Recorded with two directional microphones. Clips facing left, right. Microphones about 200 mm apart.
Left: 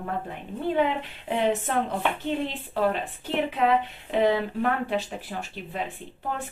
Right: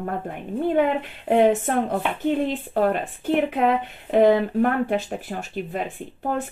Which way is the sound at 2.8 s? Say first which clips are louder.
Right 3 dB; 50° right (ahead or behind).